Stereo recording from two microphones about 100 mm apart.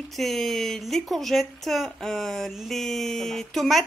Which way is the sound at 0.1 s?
Centre (ahead or behind).